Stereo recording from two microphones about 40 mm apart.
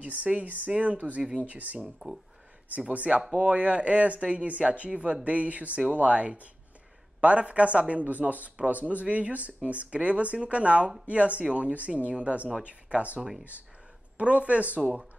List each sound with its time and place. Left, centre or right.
0.0 s speech: right
2.9 s speech: right
14.8 s speech: right